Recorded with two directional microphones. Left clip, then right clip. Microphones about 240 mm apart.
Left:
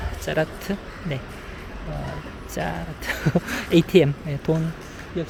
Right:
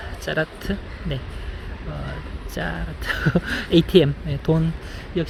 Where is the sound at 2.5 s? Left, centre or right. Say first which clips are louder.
Even; centre.